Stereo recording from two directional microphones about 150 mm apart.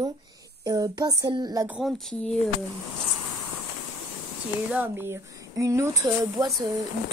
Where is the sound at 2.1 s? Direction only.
5° left (ahead or behind).